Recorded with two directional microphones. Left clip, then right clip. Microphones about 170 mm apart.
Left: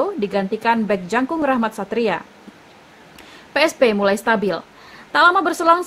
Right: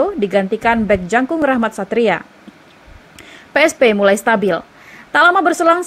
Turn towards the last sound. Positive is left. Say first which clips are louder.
# right 3 dB
turn(degrees=-15)  # may be behind; listen again after turning